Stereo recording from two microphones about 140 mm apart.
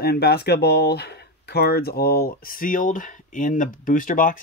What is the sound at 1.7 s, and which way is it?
Speech, 90° left.